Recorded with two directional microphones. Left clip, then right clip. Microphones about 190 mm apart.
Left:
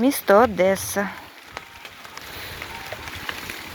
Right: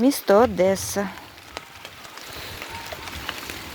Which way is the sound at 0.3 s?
10° right (ahead or behind).